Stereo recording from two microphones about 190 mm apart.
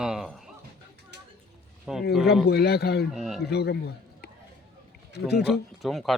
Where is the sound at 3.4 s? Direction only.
60° left (ahead or behind).